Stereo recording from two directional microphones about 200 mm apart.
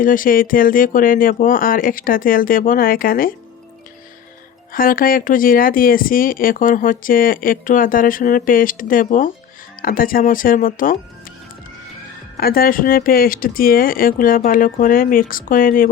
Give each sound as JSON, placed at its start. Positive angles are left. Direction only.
{"t": 0.0, "sound": "speech", "side_deg": 45}
{"t": 4.7, "sound": "speech", "side_deg": 45}
{"t": 12.4, "sound": "speech", "side_deg": 50}